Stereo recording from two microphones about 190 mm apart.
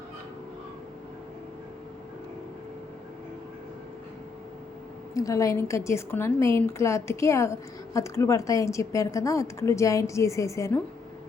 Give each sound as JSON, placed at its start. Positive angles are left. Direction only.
{"t": 5.1, "sound": "a woman's voice", "side_deg": 15}